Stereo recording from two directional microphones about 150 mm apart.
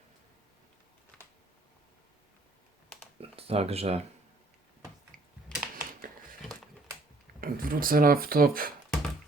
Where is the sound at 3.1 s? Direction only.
40° right (ahead or behind).